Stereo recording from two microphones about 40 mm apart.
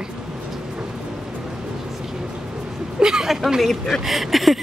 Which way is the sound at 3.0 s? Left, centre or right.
Centre.